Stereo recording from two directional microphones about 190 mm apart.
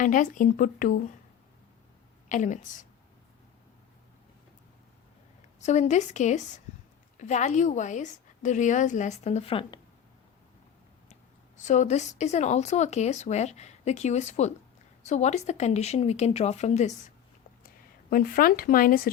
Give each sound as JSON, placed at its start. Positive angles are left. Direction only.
{"t": 0.0, "sound": "speech", "side_deg": 45}
{"t": 2.3, "sound": "speech", "side_deg": 40}
{"t": 5.5, "sound": "speech", "side_deg": 35}
{"t": 11.1, "sound": "speech", "side_deg": 40}
{"t": 18.1, "sound": "speech", "side_deg": 50}